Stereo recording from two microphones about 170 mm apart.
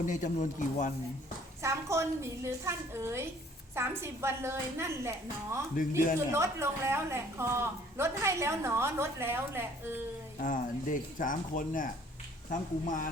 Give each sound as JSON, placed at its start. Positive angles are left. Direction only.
{"t": 0.0, "sound": "speech", "side_deg": 45}
{"t": 1.6, "sound": "a woman's voice", "side_deg": -15}
{"t": 10.4, "sound": "speech", "side_deg": 50}